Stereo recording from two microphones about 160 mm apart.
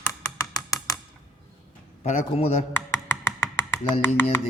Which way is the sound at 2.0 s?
45° left (ahead or behind).